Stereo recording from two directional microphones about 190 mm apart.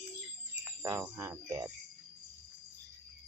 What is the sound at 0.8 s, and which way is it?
Cricket, 15° right (ahead or behind).